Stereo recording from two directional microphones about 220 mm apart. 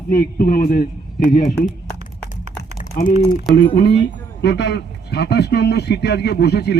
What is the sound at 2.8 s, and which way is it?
Typing, 35° left (ahead or behind).